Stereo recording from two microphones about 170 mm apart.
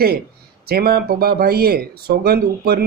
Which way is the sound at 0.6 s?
65° right (ahead or behind).